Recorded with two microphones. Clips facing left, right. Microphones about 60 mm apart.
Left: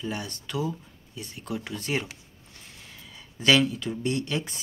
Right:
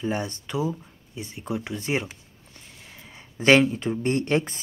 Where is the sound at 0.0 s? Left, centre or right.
Right.